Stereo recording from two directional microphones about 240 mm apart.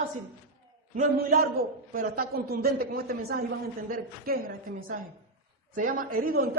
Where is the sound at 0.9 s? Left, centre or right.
Right.